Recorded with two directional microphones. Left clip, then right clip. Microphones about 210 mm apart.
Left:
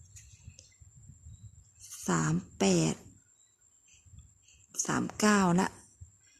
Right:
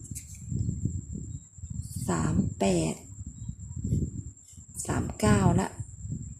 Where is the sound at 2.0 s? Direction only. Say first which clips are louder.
Right 1 dB; 30° left (ahead or behind).